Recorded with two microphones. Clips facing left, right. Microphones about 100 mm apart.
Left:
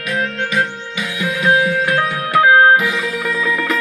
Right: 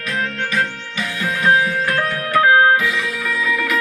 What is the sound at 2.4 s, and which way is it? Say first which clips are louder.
Music: left 3 dB; 25° left (ahead or behind).